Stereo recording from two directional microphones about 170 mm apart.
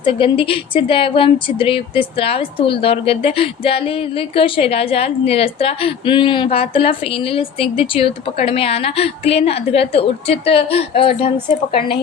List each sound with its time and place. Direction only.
0.0 s speech: 30° left (ahead or behind)